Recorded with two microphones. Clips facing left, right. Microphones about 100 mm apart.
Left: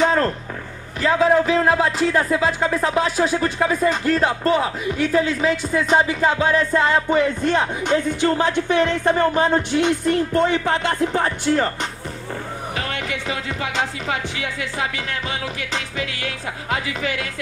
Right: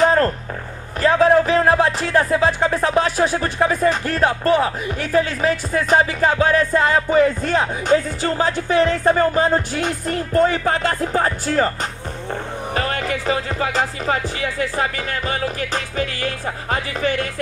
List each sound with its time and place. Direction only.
1.0 s speech: 40° right (ahead or behind)
12.7 s speech: 40° right (ahead or behind)